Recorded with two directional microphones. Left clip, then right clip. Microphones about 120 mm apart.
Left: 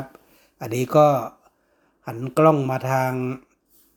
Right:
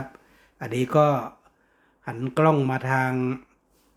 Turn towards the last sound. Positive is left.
turn(degrees=15)  # may be behind; listen again after turning